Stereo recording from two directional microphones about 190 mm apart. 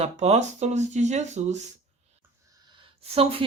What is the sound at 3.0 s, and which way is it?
Speech, 30° right (ahead or behind).